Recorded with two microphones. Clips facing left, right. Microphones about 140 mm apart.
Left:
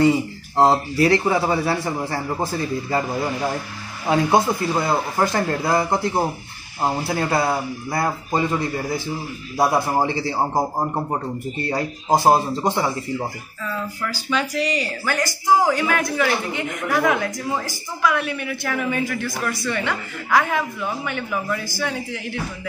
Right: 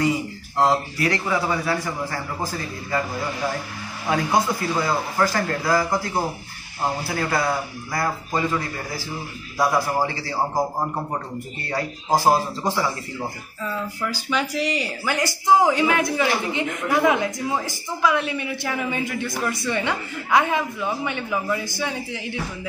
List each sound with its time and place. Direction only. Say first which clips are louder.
0.0 s speech: left 5 dB; 25° left (ahead or behind)
4.1 s speech: left 3 dB; 25° left (ahead or behind)
11.7 s speech: left 2 dB; 20° left (ahead or behind)
14.0 s speech: left 1 dB; 10° right (ahead or behind)